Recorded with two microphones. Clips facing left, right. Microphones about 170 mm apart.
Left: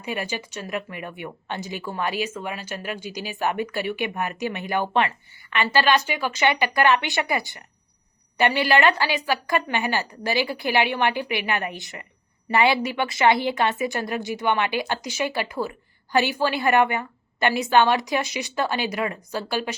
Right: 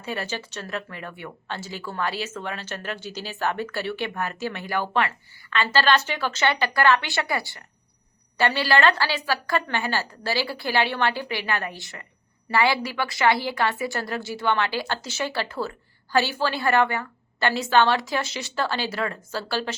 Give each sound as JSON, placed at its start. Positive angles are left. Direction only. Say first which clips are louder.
{"t": 0.0, "sound": "a woman's voice", "louder": "left 1 dB", "side_deg": 15}